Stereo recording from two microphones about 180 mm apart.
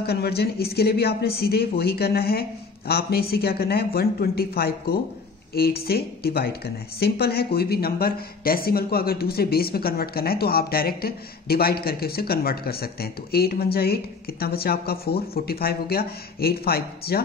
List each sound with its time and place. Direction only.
0.0 s speech: 60° left (ahead or behind)